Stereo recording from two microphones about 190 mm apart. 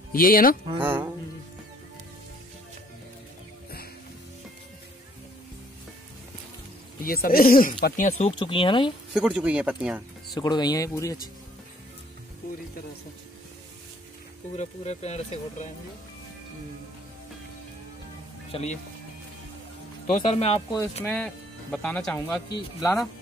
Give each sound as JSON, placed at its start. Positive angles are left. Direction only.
{"t": 0.1, "sound": "speech", "side_deg": 50}
{"t": 0.7, "sound": "speech", "side_deg": -10}
{"t": 7.0, "sound": "speech", "side_deg": 50}
{"t": 9.1, "sound": "speech", "side_deg": -5}
{"t": 10.3, "sound": "speech", "side_deg": 20}
{"t": 14.5, "sound": "speech", "side_deg": 35}
{"t": 18.5, "sound": "speech", "side_deg": 35}
{"t": 20.2, "sound": "speech", "side_deg": 35}
{"t": 21.0, "sound": "speech", "side_deg": 5}
{"t": 22.5, "sound": "speech", "side_deg": 20}